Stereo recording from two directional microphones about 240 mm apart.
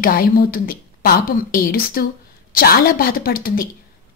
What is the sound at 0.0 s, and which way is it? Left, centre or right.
Speech, left.